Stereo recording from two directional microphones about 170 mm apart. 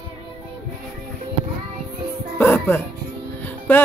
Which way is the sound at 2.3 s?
10° left (ahead or behind).